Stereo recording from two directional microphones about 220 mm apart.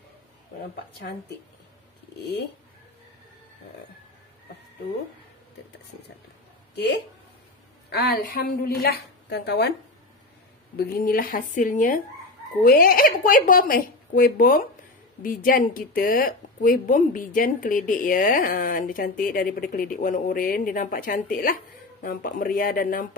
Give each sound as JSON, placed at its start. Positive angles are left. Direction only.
{"t": 7.9, "sound": "a woman's voice", "side_deg": 40}
{"t": 10.8, "sound": "speech", "side_deg": 40}